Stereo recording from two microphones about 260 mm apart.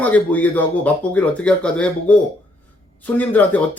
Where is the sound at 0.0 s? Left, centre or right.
Centre.